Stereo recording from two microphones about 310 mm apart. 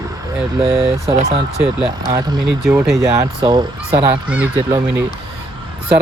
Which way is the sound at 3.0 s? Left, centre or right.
Centre.